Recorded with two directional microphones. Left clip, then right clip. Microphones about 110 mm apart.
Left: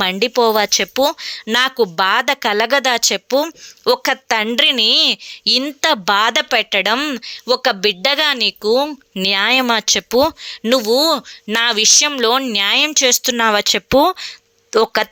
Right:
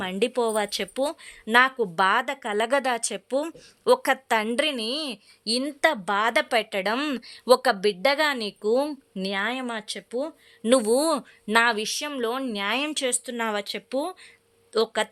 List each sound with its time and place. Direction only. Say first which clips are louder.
0.3 s a woman's voice: left 11 dB; 25° left (ahead or behind)
2.0 s a woman's voice: left 5 dB; 5° left (ahead or behind)
2.2 s a woman's voice: left 11 dB; 25° left (ahead or behind)
2.6 s a woman's voice: left 8 dB; 10° left (ahead or behind)
3.2 s a woman's voice: left 10 dB; 25° left (ahead or behind)
4.0 s a woman's voice: left 7 dB; 10° left (ahead or behind)
9.1 s a woman's voice: left 14 dB; 30° left (ahead or behind)
9.4 s speech: left 16 dB; 65° left (ahead or behind)
10.8 s a woman's voice: left 9 dB; 5° left (ahead or behind)
11.5 s a woman's voice: left 9 dB; 25° left (ahead or behind)
12.7 s a woman's voice: left 13 dB; 15° left (ahead or behind)
13.3 s speech: left 13 dB; 40° left (ahead or behind)
13.6 s speech: left 16 dB; 55° left (ahead or behind)